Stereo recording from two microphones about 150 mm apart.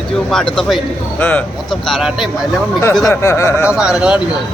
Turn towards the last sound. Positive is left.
turn(degrees=-5)  # may be behind; listen again after turning